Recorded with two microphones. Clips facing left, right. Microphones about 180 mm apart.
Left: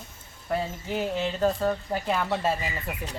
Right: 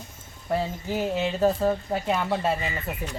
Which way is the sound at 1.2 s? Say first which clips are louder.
Right 3 dB; 5° right (ahead or behind).